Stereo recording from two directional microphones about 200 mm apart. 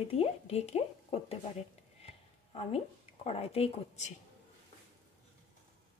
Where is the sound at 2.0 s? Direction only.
30° left (ahead or behind).